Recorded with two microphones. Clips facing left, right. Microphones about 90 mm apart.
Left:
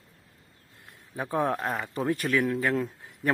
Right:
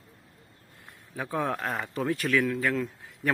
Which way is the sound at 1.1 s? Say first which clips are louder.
Left 2 dB; 20° left (ahead or behind).